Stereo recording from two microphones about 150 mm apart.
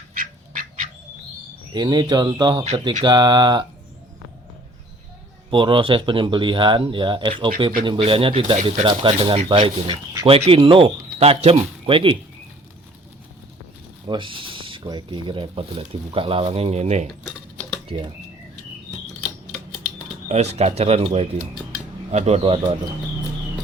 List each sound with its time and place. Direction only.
0.1 s duck: 60° right (ahead or behind)
1.7 s speech: 30° right (ahead or behind)
5.5 s speech: 35° right (ahead or behind)
14.1 s speech: 35° right (ahead or behind); by 17.1 s 50° right (ahead or behind)
17.8 s speech: 35° right (ahead or behind)
20.2 s speech: 45° right (ahead or behind)